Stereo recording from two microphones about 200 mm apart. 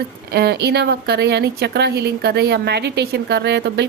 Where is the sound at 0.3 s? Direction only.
55° right (ahead or behind).